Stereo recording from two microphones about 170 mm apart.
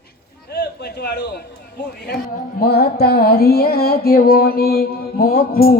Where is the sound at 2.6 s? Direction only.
65° left (ahead or behind).